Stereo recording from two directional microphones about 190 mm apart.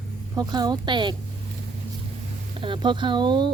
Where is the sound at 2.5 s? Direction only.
25° right (ahead or behind).